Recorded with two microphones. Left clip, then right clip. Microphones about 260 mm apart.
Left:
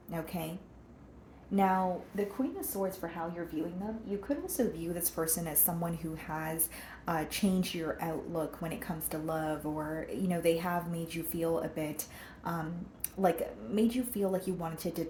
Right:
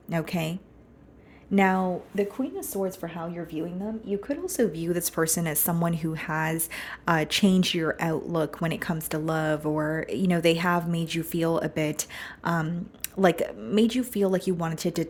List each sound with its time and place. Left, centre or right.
0.1 s speech: right
1.5 s speech: right
13.2 s speech: right